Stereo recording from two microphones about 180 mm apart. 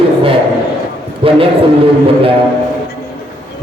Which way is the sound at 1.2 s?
30° right (ahead or behind).